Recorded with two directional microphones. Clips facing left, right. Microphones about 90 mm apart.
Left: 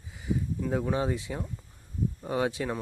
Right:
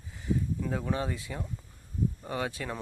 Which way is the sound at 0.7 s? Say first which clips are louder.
Left 6 dB; 15° left (ahead or behind).